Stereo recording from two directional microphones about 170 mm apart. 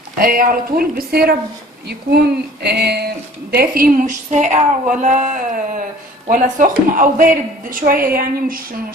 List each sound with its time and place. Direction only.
0.2 s a woman's voice: 55° right (ahead or behind)
1.9 s a sound: 70° right (ahead or behind)
3.5 s a woman's voice: 60° right (ahead or behind)